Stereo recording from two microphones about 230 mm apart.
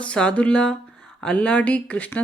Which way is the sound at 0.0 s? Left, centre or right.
Centre.